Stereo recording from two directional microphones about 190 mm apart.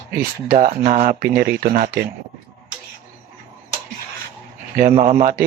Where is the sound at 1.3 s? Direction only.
50° right (ahead or behind).